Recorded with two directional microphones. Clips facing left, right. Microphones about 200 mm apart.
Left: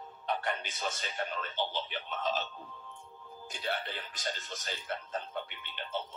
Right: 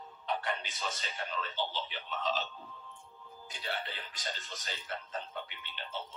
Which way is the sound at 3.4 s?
50° left (ahead or behind).